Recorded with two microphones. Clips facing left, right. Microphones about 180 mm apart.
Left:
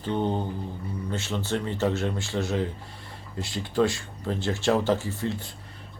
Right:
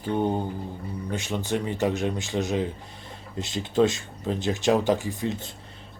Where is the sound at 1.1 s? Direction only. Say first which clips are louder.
Right 2 dB; 15° right (ahead or behind).